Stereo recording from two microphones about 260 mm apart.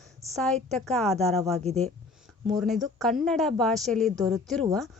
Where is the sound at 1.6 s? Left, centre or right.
Right.